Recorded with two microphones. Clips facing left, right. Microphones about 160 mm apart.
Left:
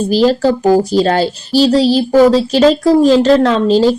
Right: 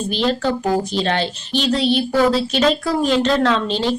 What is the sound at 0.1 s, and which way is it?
A child's voice, 35° left (ahead or behind).